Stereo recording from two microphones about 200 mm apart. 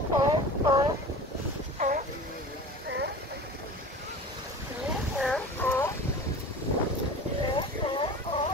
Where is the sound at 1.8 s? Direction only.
40° right (ahead or behind).